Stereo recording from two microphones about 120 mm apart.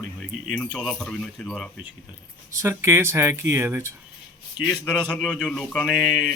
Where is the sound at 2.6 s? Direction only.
20° right (ahead or behind).